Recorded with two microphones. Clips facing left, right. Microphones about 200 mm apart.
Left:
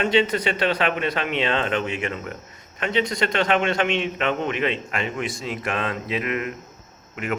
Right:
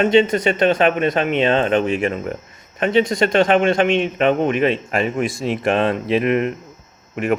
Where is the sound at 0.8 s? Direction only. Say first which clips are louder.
Right 7 dB; 45° right (ahead or behind).